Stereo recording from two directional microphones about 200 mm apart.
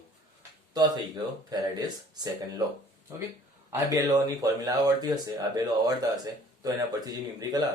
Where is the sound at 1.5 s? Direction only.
20° right (ahead or behind).